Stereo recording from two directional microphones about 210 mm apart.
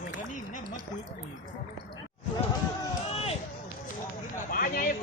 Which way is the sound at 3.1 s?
30° left (ahead or behind).